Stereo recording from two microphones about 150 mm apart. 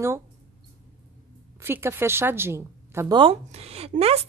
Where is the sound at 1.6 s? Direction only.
15° right (ahead or behind).